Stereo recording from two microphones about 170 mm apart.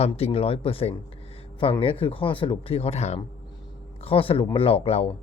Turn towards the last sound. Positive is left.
turn(degrees=35)  # may be behind; listen again after turning